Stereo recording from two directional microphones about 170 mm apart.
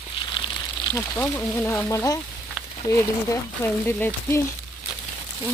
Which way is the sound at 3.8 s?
15° left (ahead or behind).